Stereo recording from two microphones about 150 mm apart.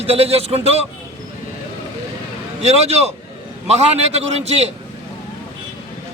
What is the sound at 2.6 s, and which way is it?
A man's voice, 45° right (ahead or behind).